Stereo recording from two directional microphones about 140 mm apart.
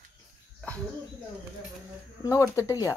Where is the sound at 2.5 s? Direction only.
25° left (ahead or behind).